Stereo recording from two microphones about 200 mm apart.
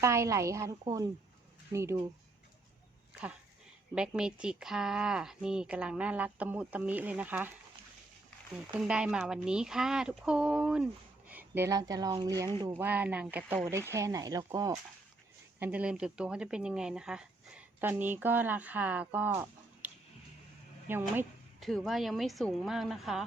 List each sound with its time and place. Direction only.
0.0 s speech: 15° right (ahead or behind)
3.9 s speech: 5° right (ahead or behind)
8.8 s speech: 5° right (ahead or behind)
21.6 s speech: centre (ahead or behind)